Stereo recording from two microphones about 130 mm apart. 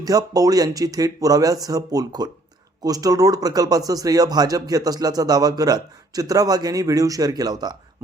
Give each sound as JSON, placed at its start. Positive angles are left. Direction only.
{"t": 0.0, "sound": "speech", "side_deg": -30}